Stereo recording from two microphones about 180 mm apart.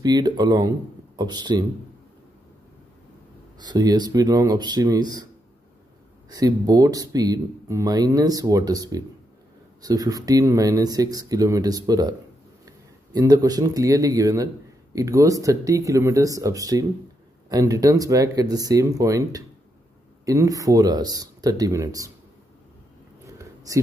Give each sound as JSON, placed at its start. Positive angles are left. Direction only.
{"t": 0.0, "sound": "speech", "side_deg": -25}
{"t": 3.5, "sound": "speech", "side_deg": -20}
{"t": 6.3, "sound": "speech", "side_deg": -20}
{"t": 23.2, "sound": "a sound", "side_deg": -15}